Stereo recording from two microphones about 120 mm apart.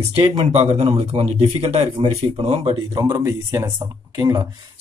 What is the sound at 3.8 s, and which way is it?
Speech, 30° right (ahead or behind).